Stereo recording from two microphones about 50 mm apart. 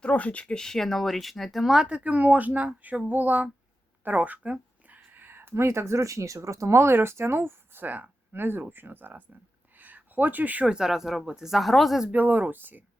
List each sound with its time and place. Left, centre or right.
0.0 s speech: left; by 1.8 s centre
2.0 s speech: right
4.9 s a sound: right
5.6 s speech: right
9.7 s a sound: right
10.7 s speech: centre
12.1 s speech: right